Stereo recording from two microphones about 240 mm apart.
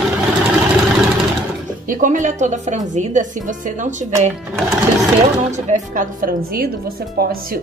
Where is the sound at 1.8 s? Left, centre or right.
Right.